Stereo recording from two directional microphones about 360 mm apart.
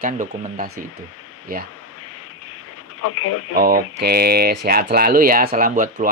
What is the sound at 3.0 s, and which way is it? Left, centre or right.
Mantra, left.